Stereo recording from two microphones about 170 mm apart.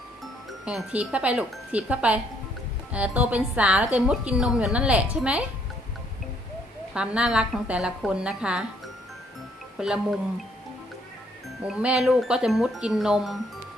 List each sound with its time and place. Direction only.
0.6 s speech: 5° right (ahead or behind)
3.9 s wind chime: 5° right (ahead or behind)
6.9 s wind chime: 5° right (ahead or behind)
9.7 s wind chime: 5° right (ahead or behind)
11.6 s wind chime: 5° right (ahead or behind)